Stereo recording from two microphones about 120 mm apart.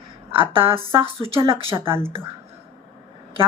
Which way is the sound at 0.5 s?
50° right (ahead or behind).